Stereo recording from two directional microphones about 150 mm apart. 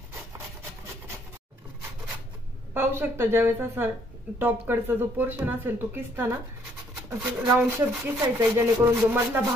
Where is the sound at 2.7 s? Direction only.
15° right (ahead or behind).